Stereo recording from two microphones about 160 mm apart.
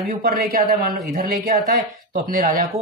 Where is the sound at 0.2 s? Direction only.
65° right (ahead or behind).